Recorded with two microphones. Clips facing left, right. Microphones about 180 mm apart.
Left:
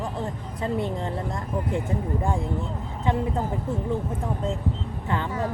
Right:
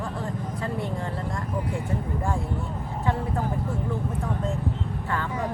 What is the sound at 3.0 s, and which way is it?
Speech, 20° left (ahead or behind).